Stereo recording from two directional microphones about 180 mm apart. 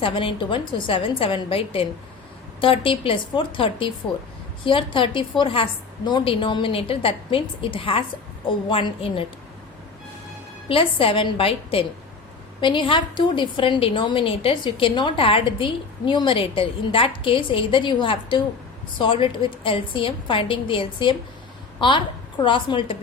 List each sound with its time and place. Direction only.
0.0 s a woman's voice: 30° left (ahead or behind)
10.7 s a woman's voice: 30° left (ahead or behind)